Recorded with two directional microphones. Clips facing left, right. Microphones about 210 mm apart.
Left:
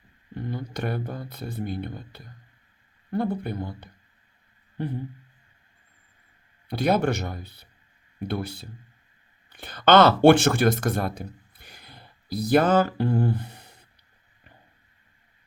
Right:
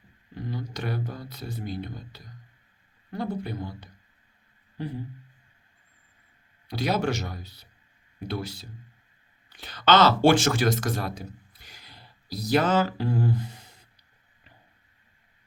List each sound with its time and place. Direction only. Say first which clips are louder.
0.3 s a man's voice: left 2 dB; 55° left (ahead or behind)
6.7 s a man's voice: left 4 dB; 55° left (ahead or behind)